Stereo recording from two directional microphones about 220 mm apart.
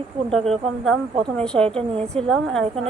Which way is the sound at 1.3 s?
5° left (ahead or behind).